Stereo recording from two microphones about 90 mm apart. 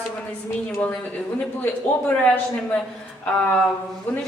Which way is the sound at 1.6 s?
20° left (ahead or behind).